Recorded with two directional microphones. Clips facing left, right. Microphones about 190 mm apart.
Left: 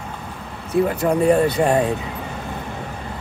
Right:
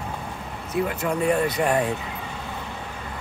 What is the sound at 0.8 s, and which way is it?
Speech, 35° left (ahead or behind).